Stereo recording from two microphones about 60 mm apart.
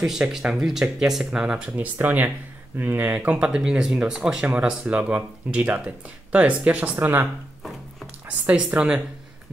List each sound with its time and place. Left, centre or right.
0.0 s speech: centre
1.7 s speech: right
3.3 s speech: centre
4.6 s speech: centre
8.3 s speech: right